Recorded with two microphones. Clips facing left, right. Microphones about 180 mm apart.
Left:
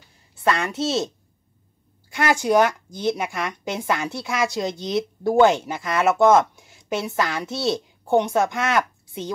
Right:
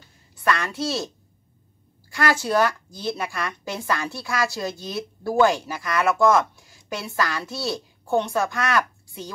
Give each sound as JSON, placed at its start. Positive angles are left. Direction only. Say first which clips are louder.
{"t": 0.4, "sound": "a woman's voice", "louder": "left 2 dB", "side_deg": 25}